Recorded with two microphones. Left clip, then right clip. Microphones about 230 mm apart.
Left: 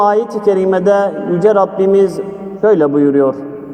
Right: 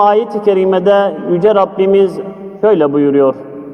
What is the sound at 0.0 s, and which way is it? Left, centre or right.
A man's voice, right.